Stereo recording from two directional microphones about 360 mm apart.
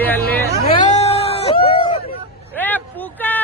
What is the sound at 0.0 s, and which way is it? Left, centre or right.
Hubbub, centre.